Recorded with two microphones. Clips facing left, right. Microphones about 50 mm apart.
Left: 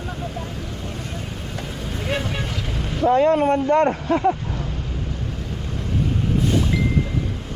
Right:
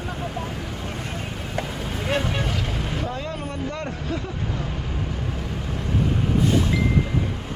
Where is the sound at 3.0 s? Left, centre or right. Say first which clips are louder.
Left 14 dB; left.